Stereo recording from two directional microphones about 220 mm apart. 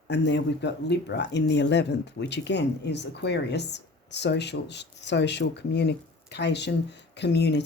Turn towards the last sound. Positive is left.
turn(degrees=50)  # may be behind; listen again after turning